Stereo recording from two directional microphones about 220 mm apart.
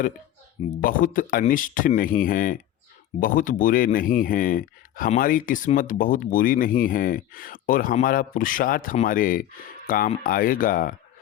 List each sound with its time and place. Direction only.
0.8 s speech: 40° left (ahead or behind)